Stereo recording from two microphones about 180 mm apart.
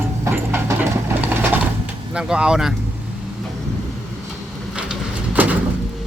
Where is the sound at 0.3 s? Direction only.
10° right (ahead or behind).